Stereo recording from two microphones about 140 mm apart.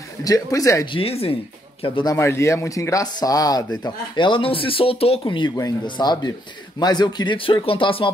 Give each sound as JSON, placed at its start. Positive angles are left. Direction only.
{"t": 0.2, "sound": "speech", "side_deg": 25}
{"t": 0.9, "sound": "speech", "side_deg": 45}
{"t": 2.0, "sound": "speech", "side_deg": 20}